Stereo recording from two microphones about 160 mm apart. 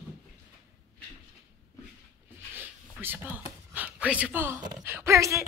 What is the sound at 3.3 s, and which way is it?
Speech, 10° right (ahead or behind).